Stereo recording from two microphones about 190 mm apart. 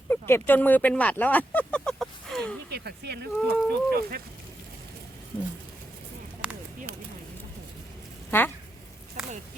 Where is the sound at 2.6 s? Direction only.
60° right (ahead or behind).